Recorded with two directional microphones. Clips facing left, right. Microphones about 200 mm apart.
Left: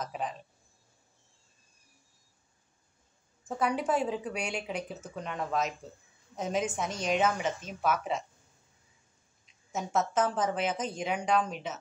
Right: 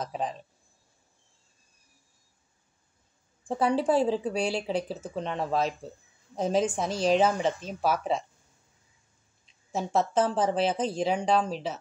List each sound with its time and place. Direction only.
0.0 s speech: 35° right (ahead or behind)
3.4 s speech: 30° right (ahead or behind)
9.7 s speech: 30° right (ahead or behind)